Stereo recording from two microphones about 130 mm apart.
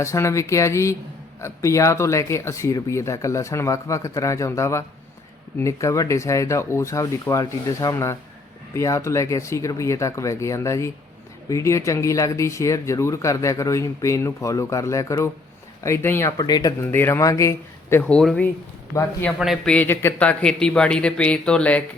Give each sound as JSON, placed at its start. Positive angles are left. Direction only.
{"t": 0.0, "sound": "speech", "side_deg": 20}
{"t": 16.4, "sound": "speech", "side_deg": 30}
{"t": 16.8, "sound": "speech", "side_deg": 15}
{"t": 18.0, "sound": "speech", "side_deg": 5}
{"t": 19.6, "sound": "speech", "side_deg": 10}